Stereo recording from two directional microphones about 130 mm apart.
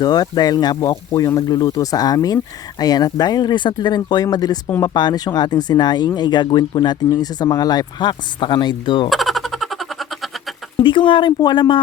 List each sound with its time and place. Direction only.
0.0 s speech: 30° left (ahead or behind)
9.0 s a sound: centre (ahead or behind)
10.8 s speech: 40° left (ahead or behind)